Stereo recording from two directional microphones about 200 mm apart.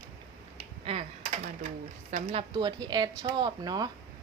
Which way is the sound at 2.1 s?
30° right (ahead or behind).